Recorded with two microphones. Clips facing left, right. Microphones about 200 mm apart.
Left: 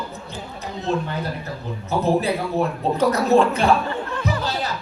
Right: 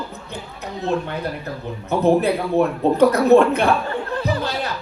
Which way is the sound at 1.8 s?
60° right (ahead or behind).